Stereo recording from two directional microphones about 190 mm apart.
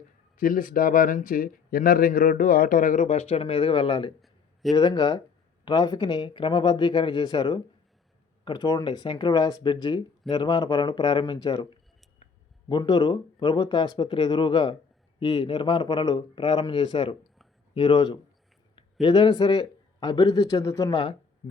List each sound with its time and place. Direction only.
0.3 s speech: 45° left (ahead or behind); by 21.1 s 20° left (ahead or behind)